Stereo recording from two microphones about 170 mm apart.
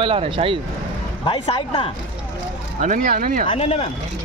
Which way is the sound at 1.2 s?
30° left (ahead or behind).